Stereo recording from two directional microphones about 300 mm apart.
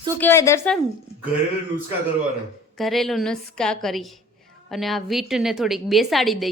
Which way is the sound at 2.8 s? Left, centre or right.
Centre.